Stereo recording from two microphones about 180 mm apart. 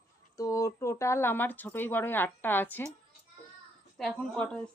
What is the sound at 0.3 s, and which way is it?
A woman's voice, 20° left (ahead or behind).